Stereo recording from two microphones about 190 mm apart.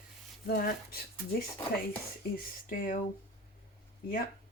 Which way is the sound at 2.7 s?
50° left (ahead or behind).